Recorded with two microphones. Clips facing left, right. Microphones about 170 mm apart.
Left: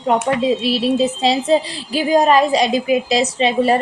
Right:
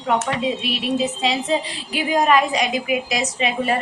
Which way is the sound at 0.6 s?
30° left (ahead or behind).